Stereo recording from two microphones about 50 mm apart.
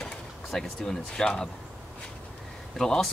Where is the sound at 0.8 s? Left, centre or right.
Centre.